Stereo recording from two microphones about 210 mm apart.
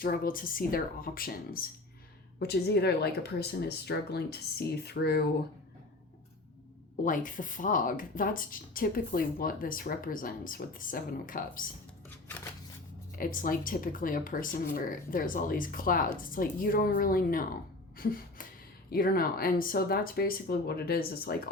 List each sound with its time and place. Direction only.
0.0 s speech: 40° left (ahead or behind)
6.9 s speech: 40° left (ahead or behind)
13.1 s speech: 40° left (ahead or behind)
17.9 s a sound: 45° left (ahead or behind)
18.9 s speech: 45° left (ahead or behind)